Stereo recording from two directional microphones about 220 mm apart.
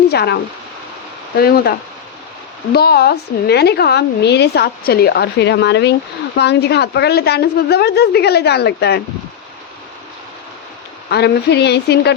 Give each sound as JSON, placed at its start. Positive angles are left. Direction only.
{"t": 0.1, "sound": "speech", "side_deg": 50}
{"t": 1.4, "sound": "a woman's voice", "side_deg": 45}
{"t": 2.7, "sound": "a woman's voice", "side_deg": 45}
{"t": 11.1, "sound": "a woman's voice", "side_deg": 50}